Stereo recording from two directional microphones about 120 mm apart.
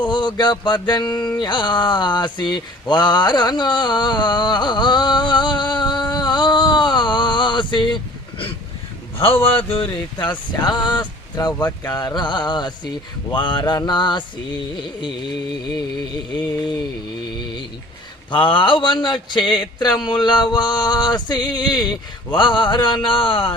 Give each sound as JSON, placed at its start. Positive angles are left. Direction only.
{"t": 0.0, "sound": "speech", "side_deg": 40}
{"t": 1.4, "sound": "mantra", "side_deg": 40}
{"t": 9.2, "sound": "a man's voice", "side_deg": 50}
{"t": 18.4, "sound": "speech", "side_deg": 45}